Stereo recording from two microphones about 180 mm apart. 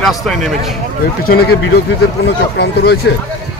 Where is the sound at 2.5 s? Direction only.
65° left (ahead or behind).